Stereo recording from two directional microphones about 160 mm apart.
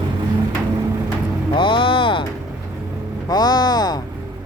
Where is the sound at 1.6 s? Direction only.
30° left (ahead or behind).